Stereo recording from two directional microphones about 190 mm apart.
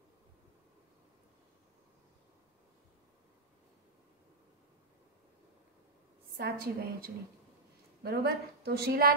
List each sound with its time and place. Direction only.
6.3 s a woman's voice: 50° right (ahead or behind)